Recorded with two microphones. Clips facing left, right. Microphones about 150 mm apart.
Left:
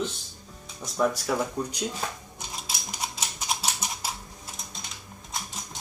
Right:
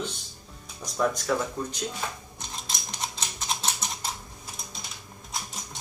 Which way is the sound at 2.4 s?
10° left (ahead or behind).